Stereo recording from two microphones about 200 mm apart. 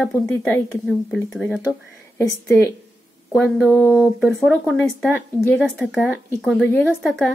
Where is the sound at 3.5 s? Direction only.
5° right (ahead or behind).